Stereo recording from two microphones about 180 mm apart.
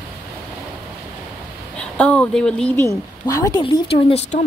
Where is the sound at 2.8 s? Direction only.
15° left (ahead or behind).